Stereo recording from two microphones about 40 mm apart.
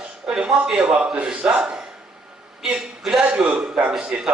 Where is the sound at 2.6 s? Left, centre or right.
Centre.